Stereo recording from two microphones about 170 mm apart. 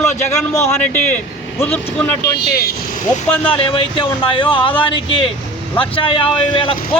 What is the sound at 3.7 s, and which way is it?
Speech, 30° left (ahead or behind).